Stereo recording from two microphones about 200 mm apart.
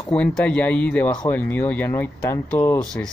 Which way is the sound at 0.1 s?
5° left (ahead or behind).